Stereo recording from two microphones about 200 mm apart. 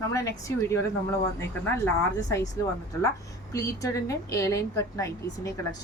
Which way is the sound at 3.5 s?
15° left (ahead or behind).